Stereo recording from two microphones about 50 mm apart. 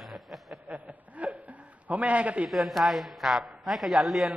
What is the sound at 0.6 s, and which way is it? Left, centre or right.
Chuckle, right.